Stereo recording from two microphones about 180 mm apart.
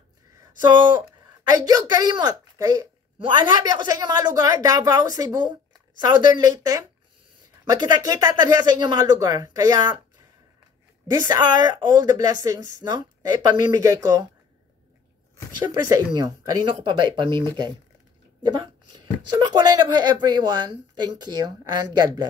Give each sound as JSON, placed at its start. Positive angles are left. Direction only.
{"t": 1.5, "sound": "a woman's voice", "side_deg": -20}
{"t": 11.1, "sound": "a woman's voice", "side_deg": -20}
{"t": 15.6, "sound": "a woman's voice", "side_deg": -20}
{"t": 19.3, "sound": "a woman's voice", "side_deg": -25}